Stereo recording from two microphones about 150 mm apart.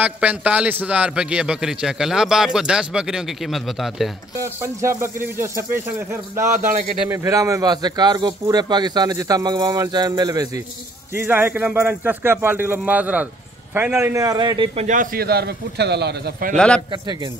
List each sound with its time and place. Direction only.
0.0 s a man's voice: 10° right (ahead or behind)
4.4 s a man's voice: 15° right (ahead or behind)
6.5 s speech: 60° right (ahead or behind)
7.1 s speech: 20° right (ahead or behind)
11.1 s a man's voice: 15° right (ahead or behind); by 14.7 s 30° right (ahead or behind)
14.8 s speech: 55° right (ahead or behind)
15.1 s speech: 90° right
16.5 s a man's voice: 5° left (ahead or behind)